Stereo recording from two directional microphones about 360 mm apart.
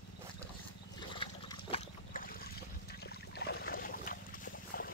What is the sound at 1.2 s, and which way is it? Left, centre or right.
Trickle, centre.